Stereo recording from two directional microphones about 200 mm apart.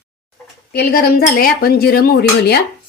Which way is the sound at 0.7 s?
50° left (ahead or behind).